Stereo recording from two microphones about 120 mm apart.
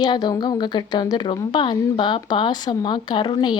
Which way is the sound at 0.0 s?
35° left (ahead or behind).